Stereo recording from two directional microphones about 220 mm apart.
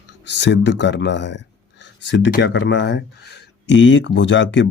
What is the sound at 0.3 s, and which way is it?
Speech, 55° left (ahead or behind).